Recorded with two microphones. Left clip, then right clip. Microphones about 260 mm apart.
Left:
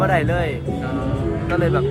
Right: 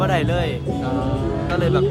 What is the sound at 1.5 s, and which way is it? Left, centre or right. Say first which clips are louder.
Speech: even; centre.